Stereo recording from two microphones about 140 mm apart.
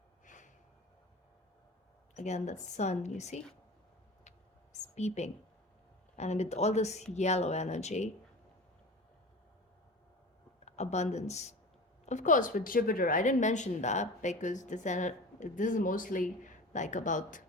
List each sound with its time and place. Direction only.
0.3 s snort: 65° left (ahead or behind)
2.1 s a woman's voice: 55° left (ahead or behind)
4.9 s speech: 55° left (ahead or behind)
10.7 s a woman's voice: 50° left (ahead or behind)